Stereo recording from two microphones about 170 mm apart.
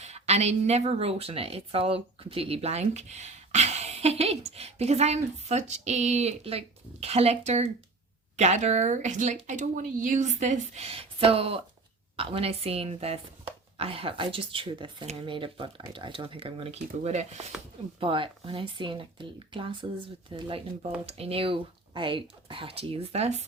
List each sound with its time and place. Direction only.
0.0 s speech: 40° right (ahead or behind)
18.0 s speech: 30° right (ahead or behind)